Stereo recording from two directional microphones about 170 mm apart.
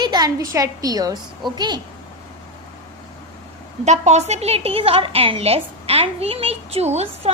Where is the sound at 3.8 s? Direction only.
40° right (ahead or behind).